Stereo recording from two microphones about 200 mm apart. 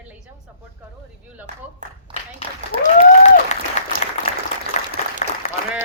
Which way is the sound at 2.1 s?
35° left (ahead or behind).